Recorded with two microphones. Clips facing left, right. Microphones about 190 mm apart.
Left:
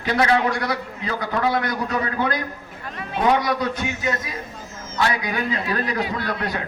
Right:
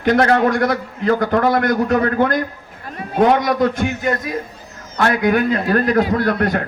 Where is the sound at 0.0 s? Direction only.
55° right (ahead or behind).